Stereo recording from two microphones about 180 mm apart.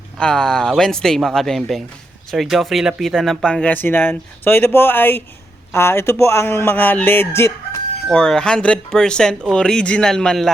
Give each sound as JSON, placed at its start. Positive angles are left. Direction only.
{"t": 0.2, "sound": "speech", "side_deg": 5}
{"t": 8.1, "sound": "speech", "side_deg": 5}